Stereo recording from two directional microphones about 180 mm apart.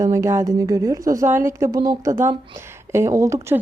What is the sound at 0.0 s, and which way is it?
A woman's voice, 15° right (ahead or behind).